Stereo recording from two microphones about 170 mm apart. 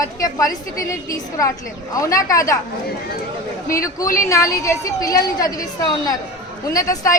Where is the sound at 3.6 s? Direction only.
20° left (ahead or behind).